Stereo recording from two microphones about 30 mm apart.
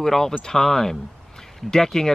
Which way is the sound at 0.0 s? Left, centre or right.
Centre.